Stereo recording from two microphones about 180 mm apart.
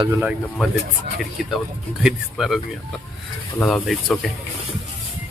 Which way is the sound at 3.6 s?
5° left (ahead or behind).